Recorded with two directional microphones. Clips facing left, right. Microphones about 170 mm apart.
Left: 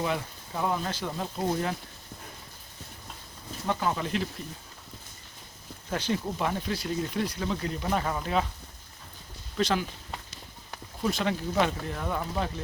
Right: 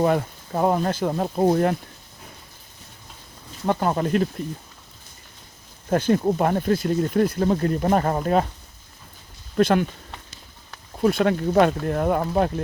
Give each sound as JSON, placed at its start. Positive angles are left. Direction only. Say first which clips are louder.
{"t": 0.0, "sound": "speech", "louder": "right 10 dB", "side_deg": -50}
{"t": 3.7, "sound": "speech", "louder": "right 7 dB", "side_deg": -50}
{"t": 5.9, "sound": "speech", "louder": "right 10 dB", "side_deg": -50}
{"t": 9.6, "sound": "speech", "louder": "right 9 dB", "side_deg": -55}
{"t": 11.0, "sound": "speech", "louder": "right 9 dB", "side_deg": -55}